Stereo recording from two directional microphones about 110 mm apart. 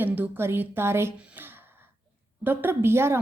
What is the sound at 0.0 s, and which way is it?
A woman's voice, 20° right (ahead or behind).